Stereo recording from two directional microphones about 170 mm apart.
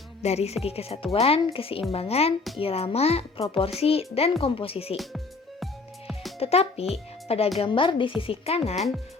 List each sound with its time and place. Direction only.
0.2 s a child's voice: 40° left (ahead or behind)
4.9 s music: centre (ahead or behind)
6.4 s a child's voice: 35° left (ahead or behind)